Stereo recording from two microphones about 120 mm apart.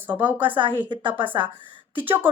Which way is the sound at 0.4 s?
45° right (ahead or behind).